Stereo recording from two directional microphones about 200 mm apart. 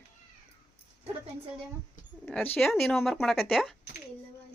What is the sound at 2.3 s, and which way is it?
Speech, 10° left (ahead or behind).